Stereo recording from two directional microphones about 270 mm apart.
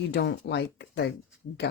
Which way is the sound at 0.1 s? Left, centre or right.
Left.